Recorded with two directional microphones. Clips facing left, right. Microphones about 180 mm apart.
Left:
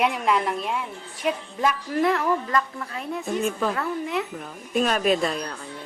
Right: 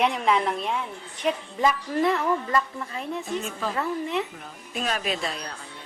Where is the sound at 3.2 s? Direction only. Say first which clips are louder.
Left 5 dB; 55° left (ahead or behind).